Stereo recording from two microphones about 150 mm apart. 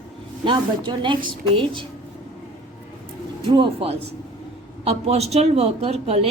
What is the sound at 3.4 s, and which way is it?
A woman's voice, 35° right (ahead or behind).